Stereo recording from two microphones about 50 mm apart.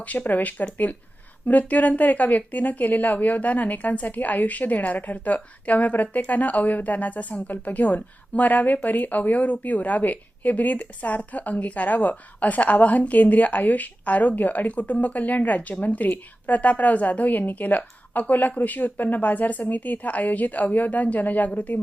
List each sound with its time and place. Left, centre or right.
0.3 s speech: left